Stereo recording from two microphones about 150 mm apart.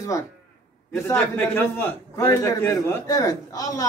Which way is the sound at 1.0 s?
15° left (ahead or behind).